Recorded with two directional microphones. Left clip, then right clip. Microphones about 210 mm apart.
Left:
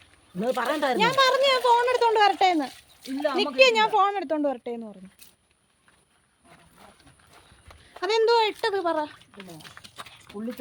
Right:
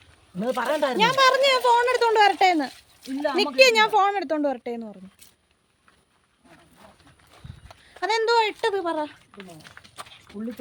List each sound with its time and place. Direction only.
0.3 s speech: 5° left (ahead or behind)
1.2 s a child's voice: 15° right (ahead or behind)
2.6 s a child's voice: centre (ahead or behind)
3.6 s a child's voice: 20° right (ahead or behind)
7.9 s speech: 5° right (ahead or behind)